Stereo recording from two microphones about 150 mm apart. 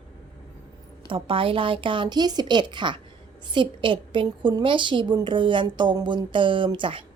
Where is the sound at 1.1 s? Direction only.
35° right (ahead or behind).